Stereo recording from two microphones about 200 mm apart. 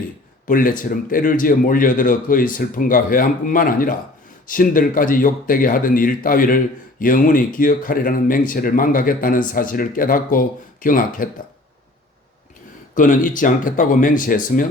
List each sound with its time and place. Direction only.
0.4 s speech: 45° left (ahead or behind)
12.9 s speech: 40° left (ahead or behind)